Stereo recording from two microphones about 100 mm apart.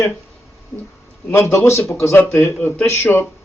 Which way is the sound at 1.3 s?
25° left (ahead or behind).